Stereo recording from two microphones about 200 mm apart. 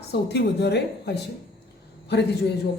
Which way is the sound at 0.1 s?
55° left (ahead or behind).